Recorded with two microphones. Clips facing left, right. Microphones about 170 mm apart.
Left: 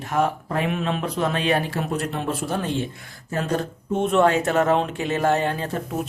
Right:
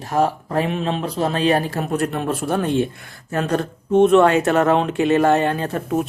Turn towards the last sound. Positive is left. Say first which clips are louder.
# right 4 dB
turn(degrees=-60)  # may be behind; listen again after turning